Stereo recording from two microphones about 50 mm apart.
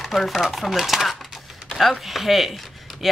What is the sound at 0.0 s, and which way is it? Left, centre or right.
A woman's voice, centre.